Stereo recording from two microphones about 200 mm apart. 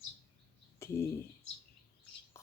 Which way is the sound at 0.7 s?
15° left (ahead or behind).